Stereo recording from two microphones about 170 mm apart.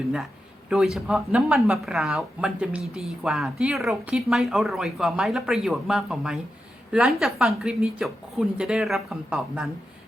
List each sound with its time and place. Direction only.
0.7 s a woman's voice: centre (ahead or behind)